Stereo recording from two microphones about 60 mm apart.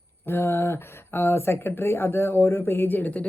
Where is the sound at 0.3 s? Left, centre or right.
Left.